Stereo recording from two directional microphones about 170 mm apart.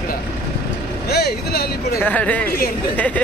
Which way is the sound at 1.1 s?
70° left (ahead or behind).